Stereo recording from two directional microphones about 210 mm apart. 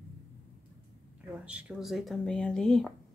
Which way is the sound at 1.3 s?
5° right (ahead or behind).